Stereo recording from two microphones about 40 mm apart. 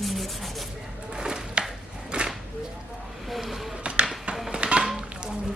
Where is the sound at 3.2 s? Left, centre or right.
Centre.